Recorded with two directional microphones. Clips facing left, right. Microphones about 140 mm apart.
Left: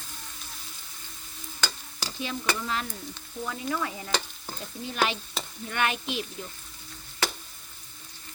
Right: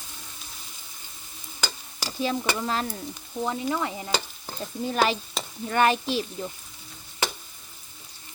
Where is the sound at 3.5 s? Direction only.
25° right (ahead or behind).